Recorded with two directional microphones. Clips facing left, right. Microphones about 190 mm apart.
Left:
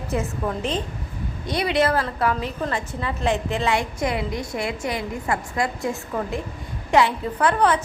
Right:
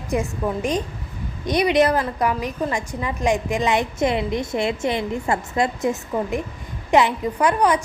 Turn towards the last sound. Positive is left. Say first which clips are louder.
# right 1 dB
turn(degrees=-10)  # may be behind; listen again after turning